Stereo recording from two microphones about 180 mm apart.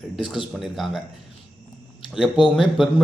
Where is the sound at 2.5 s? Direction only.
Centre (ahead or behind).